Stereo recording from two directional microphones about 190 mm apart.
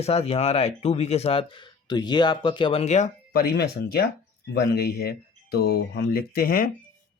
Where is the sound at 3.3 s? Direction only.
55° left (ahead or behind).